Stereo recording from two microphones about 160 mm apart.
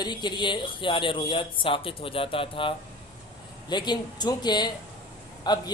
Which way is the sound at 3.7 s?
25° left (ahead or behind).